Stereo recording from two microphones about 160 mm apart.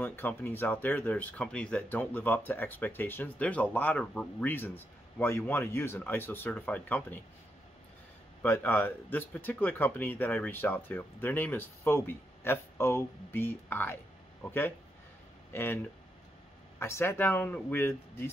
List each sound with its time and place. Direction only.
0.0 s speech: 10° left (ahead or behind)
8.4 s speech: 15° left (ahead or behind)
15.5 s speech: 15° left (ahead or behind)
16.8 s speech: 15° left (ahead or behind)